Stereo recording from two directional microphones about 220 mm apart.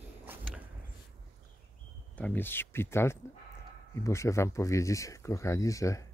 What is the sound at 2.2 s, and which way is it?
Speech, 10° left (ahead or behind).